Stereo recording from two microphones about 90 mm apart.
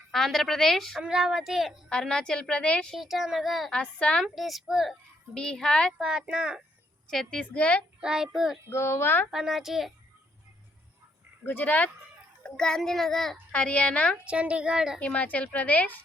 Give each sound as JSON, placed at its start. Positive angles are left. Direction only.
{"t": 0.1, "sound": "a woman's voice", "side_deg": 0}
{"t": 1.9, "sound": "a woman's voice", "side_deg": 10}
{"t": 2.9, "sound": "a woman's voice", "side_deg": -5}
{"t": 3.7, "sound": "a woman's voice", "side_deg": 10}
{"t": 5.3, "sound": "a woman's voice", "side_deg": 10}
{"t": 6.0, "sound": "a woman's voice", "side_deg": -5}
{"t": 7.1, "sound": "a woman's voice", "side_deg": 5}
{"t": 8.0, "sound": "a woman's voice", "side_deg": -5}
{"t": 8.7, "sound": "speech", "side_deg": 25}
{"t": 9.3, "sound": "a woman's voice", "side_deg": -5}
{"t": 11.4, "sound": "a woman's voice", "side_deg": 20}
{"t": 13.5, "sound": "a woman's voice", "side_deg": 15}
{"t": 14.3, "sound": "a woman's voice", "side_deg": -10}
{"t": 14.9, "sound": "a woman's voice", "side_deg": 15}